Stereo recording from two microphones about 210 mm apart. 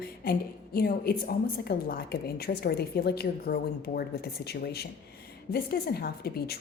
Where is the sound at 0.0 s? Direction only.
45° left (ahead or behind).